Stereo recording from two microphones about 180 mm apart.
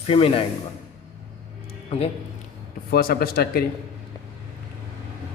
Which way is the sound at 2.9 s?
55° left (ahead or behind).